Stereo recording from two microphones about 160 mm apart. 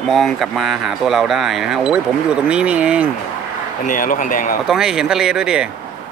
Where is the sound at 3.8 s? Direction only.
55° left (ahead or behind).